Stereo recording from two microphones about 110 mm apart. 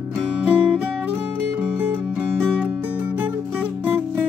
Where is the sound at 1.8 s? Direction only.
15° right (ahead or behind).